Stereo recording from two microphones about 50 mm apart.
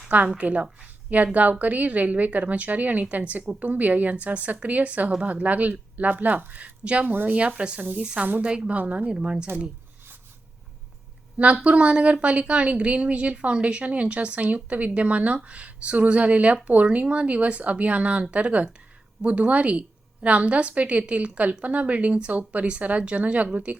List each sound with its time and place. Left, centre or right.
0.3 s a woman's voice: right
7.1 s a woman's voice: right
7.3 s speech: right
7.8 s a woman's voice: right
8.4 s a woman's voice: centre
8.7 s a woman's voice: right
9.0 s speech: centre
11.3 s speech: right